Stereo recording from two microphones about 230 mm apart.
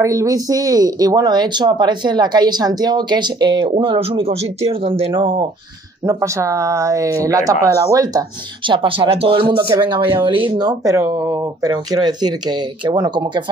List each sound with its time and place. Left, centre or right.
0.0 s speech: centre